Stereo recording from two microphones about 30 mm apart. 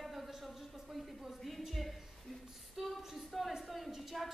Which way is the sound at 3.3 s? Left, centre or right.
Centre.